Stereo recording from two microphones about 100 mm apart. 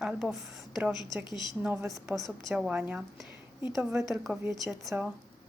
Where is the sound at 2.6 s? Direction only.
15° right (ahead or behind).